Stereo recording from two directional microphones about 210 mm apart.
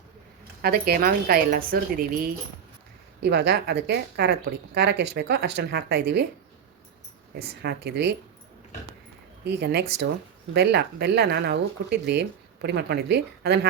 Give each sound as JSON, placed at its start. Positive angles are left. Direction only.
{"t": 0.6, "sound": "a woman's voice", "side_deg": -50}
{"t": 3.2, "sound": "a woman's voice", "side_deg": -55}
{"t": 7.3, "sound": "a woman's voice", "side_deg": -50}
{"t": 9.4, "sound": "a woman's voice", "side_deg": -55}